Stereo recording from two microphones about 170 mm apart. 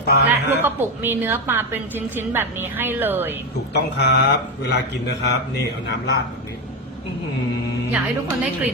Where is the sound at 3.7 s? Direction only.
80° left.